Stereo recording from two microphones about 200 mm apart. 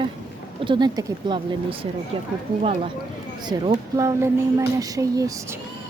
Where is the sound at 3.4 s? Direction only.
25° right (ahead or behind).